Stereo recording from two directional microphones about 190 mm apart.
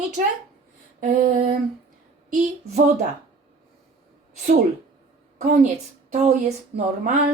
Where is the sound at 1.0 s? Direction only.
45° right (ahead or behind).